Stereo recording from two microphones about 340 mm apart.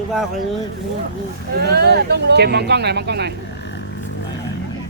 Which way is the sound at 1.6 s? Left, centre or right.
Right.